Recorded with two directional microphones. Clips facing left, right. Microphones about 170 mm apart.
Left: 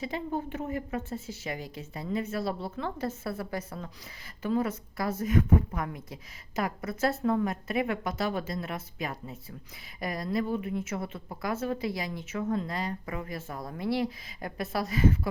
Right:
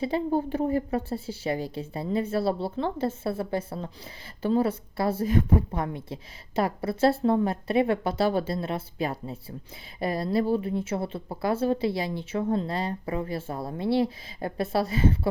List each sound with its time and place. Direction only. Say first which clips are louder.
0.0 s a woman's voice: right 7 dB; 30° right (ahead or behind)